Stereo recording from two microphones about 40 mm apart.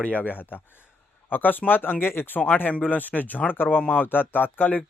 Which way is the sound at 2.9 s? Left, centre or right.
Left.